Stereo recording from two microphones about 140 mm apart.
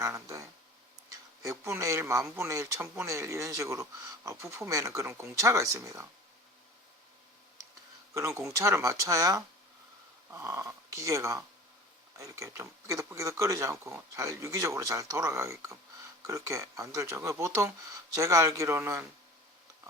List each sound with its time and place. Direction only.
0.0 s speech: 20° right (ahead or behind)
8.1 s speech: 20° right (ahead or behind)